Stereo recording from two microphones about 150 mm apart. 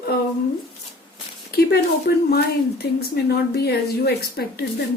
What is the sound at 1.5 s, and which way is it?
Speech, 90° left.